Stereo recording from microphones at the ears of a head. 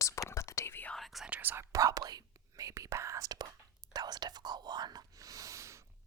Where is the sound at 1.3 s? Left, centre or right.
Right.